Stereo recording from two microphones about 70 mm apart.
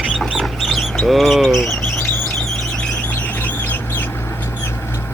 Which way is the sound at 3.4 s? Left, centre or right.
Left.